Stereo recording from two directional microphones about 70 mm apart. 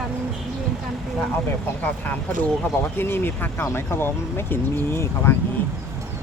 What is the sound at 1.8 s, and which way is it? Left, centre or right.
Speech, left.